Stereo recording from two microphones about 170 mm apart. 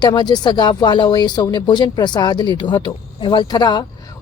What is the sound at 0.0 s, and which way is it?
A man's voice, 25° left (ahead or behind).